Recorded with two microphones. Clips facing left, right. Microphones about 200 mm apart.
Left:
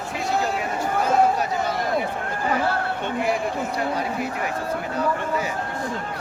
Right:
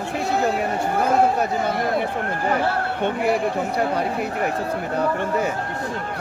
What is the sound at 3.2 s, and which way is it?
A man's voice, 60° right (ahead or behind).